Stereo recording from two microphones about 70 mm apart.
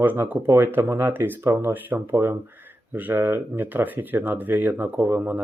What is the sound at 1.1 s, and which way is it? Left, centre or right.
Speech, right.